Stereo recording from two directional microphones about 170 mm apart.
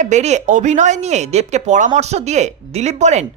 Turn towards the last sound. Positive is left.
turn(degrees=-40)  # may be behind; listen again after turning